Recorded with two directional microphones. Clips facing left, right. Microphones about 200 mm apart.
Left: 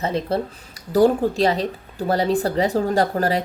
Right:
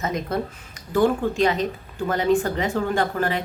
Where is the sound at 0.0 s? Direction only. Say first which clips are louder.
Left 3 dB; 30° left (ahead or behind).